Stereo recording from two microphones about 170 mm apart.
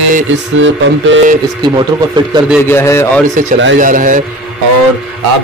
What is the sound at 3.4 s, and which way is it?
Speech, 50° right (ahead or behind).